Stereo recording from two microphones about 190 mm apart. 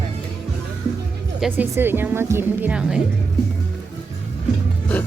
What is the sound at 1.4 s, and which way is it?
Speech, 10° right (ahead or behind).